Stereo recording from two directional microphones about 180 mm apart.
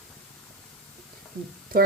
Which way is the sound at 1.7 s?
55° right (ahead or behind).